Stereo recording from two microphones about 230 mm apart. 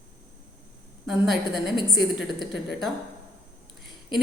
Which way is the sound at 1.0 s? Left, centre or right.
Centre.